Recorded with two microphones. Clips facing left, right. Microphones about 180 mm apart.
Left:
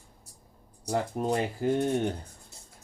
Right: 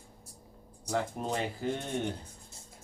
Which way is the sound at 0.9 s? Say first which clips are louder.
Left 4 dB; 35° left (ahead or behind).